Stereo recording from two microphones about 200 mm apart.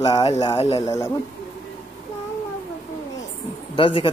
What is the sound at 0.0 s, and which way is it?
Speech, 20° left (ahead or behind).